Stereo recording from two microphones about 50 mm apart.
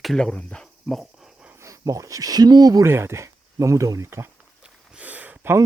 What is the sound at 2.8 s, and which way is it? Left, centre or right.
Speech, right.